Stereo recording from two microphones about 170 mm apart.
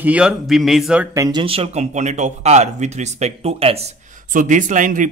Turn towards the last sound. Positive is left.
turn(degrees=-50)  # may be behind; listen again after turning